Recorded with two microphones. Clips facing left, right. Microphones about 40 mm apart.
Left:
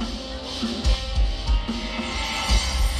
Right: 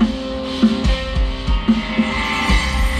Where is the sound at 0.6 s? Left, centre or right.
Right.